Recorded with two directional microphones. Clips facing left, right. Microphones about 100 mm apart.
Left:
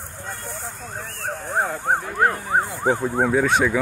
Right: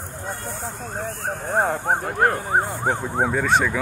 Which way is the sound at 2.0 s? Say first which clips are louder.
Right 2 dB; 50° right (ahead or behind).